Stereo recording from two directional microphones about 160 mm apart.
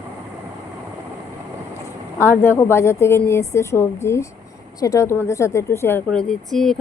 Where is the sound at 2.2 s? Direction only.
15° left (ahead or behind).